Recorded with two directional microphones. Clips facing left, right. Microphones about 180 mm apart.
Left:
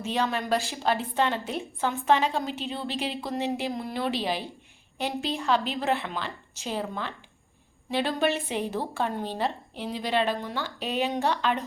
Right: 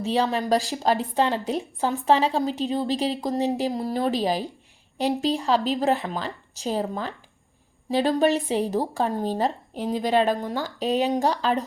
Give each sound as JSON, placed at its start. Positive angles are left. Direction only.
{"t": 0.0, "sound": "a woman's voice", "side_deg": -35}